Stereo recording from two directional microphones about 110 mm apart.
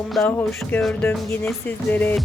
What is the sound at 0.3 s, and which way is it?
Speech, 15° left (ahead or behind).